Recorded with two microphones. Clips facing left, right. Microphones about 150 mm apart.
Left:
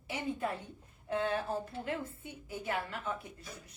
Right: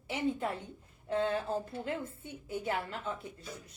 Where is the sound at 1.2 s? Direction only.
25° right (ahead or behind).